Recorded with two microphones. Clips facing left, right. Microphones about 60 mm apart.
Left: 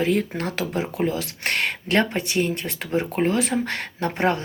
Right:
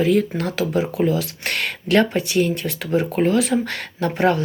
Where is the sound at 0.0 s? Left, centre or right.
Left.